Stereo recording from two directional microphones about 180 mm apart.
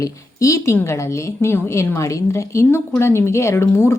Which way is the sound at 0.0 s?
15° left (ahead or behind).